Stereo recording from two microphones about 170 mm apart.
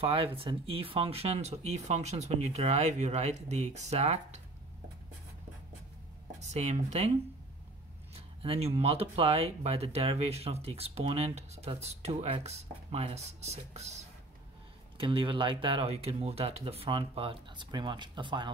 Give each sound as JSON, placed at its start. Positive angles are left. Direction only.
{"t": 0.0, "sound": "speech", "side_deg": -35}
{"t": 6.4, "sound": "speech", "side_deg": -40}
{"t": 8.4, "sound": "speech", "side_deg": -35}